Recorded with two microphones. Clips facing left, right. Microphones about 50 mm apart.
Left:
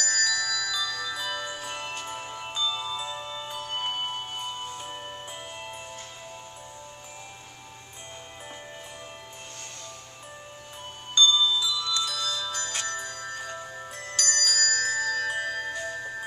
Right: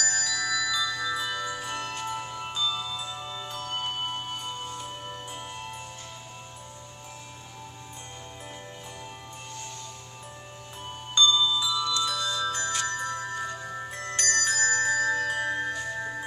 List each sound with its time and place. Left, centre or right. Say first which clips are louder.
0.0 s music: left 1 dB; centre
1.7 s music: right 2 dB; centre
11.1 s music: left 1 dB; centre
14.1 s bell: right 2 dB; right
15.4 s music: right 2 dB; centre